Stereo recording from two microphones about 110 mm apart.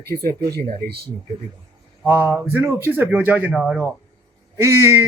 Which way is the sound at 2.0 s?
20° right (ahead or behind).